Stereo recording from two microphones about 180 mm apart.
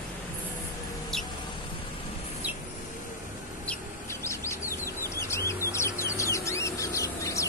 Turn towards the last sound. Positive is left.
turn(degrees=15)  # may be behind; listen again after turning